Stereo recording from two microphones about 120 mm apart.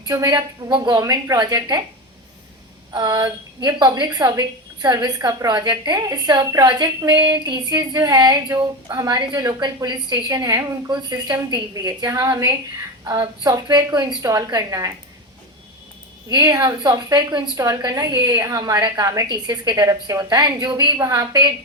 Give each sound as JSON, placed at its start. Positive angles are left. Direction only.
{"t": 0.0, "sound": "a woman's voice", "side_deg": -30}
{"t": 2.9, "sound": "a woman's voice", "side_deg": -35}
{"t": 10.8, "sound": "a woman's voice", "side_deg": -35}
{"t": 16.3, "sound": "a woman's voice", "side_deg": -35}